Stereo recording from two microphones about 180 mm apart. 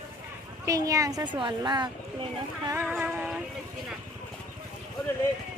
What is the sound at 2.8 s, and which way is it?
Music, 10° right (ahead or behind).